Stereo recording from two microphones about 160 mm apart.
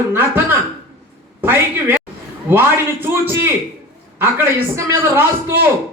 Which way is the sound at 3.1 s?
15° right (ahead or behind).